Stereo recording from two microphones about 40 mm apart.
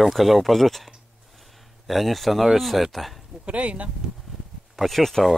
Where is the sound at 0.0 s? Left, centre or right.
Centre.